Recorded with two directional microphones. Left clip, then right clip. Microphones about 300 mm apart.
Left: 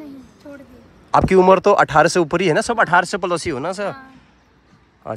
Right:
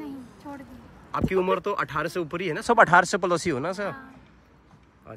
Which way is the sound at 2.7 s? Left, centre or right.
Centre.